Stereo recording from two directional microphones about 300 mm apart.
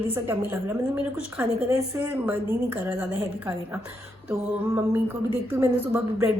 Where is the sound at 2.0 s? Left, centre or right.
Centre.